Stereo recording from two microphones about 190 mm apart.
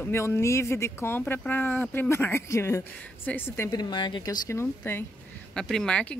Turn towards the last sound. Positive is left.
turn(degrees=5)  # may be behind; listen again after turning